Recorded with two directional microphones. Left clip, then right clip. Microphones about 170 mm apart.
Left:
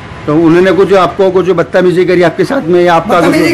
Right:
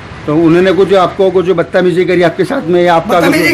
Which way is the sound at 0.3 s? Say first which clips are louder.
Left 2 dB; centre (ahead or behind).